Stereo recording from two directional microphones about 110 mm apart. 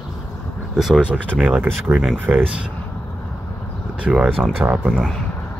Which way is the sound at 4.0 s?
10° right (ahead or behind).